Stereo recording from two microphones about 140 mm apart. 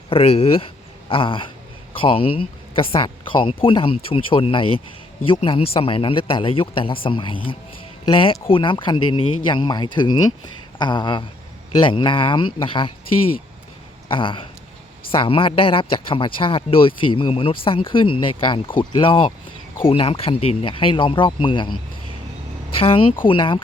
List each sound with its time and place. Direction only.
0.1 s speech: 45° left (ahead or behind)
22.8 s speech: 40° left (ahead or behind)